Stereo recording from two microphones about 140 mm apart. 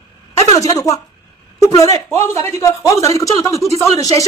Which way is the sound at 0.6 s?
25° left (ahead or behind).